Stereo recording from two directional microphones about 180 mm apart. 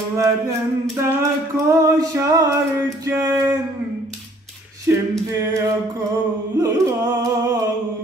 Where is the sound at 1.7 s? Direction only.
15° right (ahead or behind).